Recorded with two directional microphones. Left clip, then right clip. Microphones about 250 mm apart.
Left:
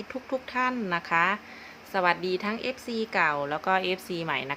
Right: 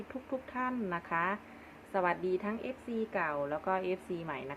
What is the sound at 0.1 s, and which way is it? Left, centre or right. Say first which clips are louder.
A woman's voice: left 9 dB; left.